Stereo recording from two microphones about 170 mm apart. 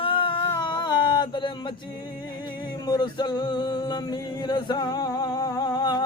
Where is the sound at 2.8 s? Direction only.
25° left (ahead or behind).